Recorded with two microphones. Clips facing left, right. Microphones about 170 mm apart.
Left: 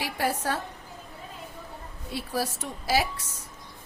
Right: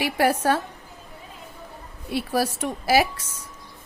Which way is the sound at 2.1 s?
75° right (ahead or behind).